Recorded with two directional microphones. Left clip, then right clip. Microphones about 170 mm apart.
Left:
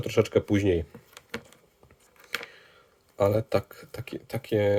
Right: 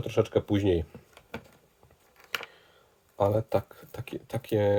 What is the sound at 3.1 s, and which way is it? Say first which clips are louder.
Speech: left 2 dB; 20° left (ahead or behind).